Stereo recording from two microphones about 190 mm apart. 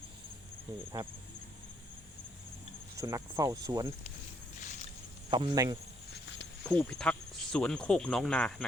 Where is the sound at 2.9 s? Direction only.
15° right (ahead or behind).